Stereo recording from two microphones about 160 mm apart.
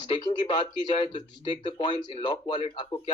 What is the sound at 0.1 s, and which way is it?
Speech, 30° left (ahead or behind).